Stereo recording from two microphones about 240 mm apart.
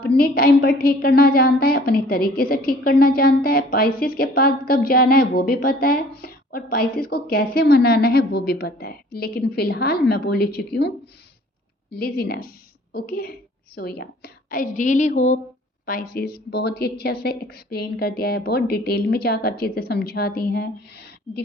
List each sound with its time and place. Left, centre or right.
0.0 s a woman's voice: left
16.1 s a woman's voice: left